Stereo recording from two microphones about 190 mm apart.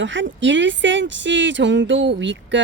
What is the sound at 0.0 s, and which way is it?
Speech, 75° right (ahead or behind).